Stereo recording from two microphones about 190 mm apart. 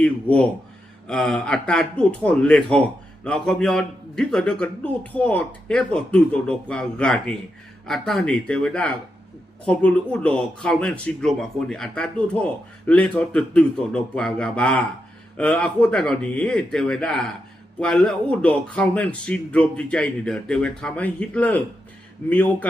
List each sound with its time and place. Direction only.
0.0 s speech: 5° left (ahead or behind)